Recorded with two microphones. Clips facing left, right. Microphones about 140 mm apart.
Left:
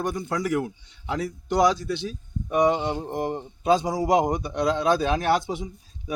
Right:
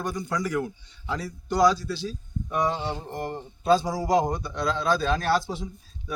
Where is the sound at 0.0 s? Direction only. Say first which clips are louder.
Left 2 dB; 25° left (ahead or behind).